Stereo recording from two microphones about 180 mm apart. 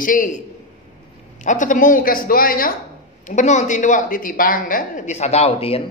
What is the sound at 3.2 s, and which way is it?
Speech, 40° left (ahead or behind).